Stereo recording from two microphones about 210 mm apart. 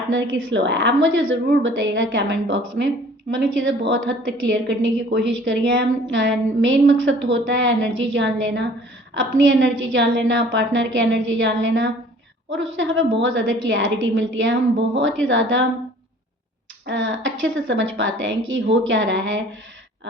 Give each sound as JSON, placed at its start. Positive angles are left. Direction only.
{"t": 0.1, "sound": "a woman's voice", "side_deg": -65}
{"t": 16.8, "sound": "a woman's voice", "side_deg": -60}